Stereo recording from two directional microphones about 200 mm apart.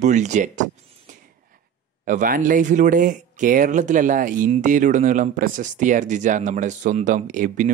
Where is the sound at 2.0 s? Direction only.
40° right (ahead or behind).